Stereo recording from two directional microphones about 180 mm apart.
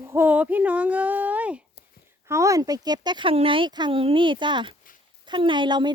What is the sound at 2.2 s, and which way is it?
Speech, 15° right (ahead or behind).